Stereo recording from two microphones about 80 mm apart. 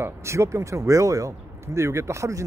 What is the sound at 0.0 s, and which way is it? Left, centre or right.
Speech, right.